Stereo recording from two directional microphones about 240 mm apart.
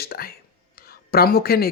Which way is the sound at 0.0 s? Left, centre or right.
Left.